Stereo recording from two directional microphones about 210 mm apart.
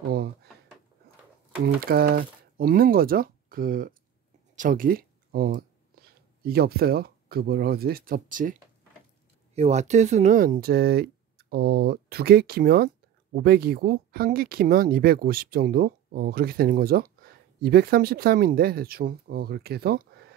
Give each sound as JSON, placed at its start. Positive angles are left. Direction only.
{"t": 0.1, "sound": "speech", "side_deg": -50}
{"t": 1.8, "sound": "speech", "side_deg": -45}
{"t": 9.6, "sound": "speech", "side_deg": -30}